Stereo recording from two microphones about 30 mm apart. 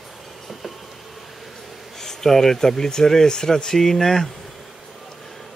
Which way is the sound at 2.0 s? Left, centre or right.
Centre.